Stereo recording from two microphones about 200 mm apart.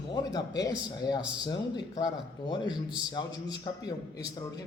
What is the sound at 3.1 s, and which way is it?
A man's voice, 20° left (ahead or behind).